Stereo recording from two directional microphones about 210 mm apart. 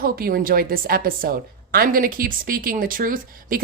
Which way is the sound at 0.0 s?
45° right (ahead or behind).